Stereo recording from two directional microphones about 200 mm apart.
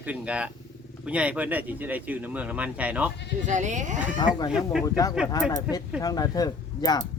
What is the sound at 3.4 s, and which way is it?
Speech, 40° right (ahead or behind).